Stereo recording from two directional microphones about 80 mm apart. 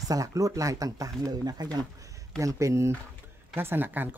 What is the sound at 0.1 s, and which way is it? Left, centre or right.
Speech, right.